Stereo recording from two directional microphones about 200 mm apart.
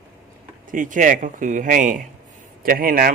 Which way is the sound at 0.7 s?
40° right (ahead or behind).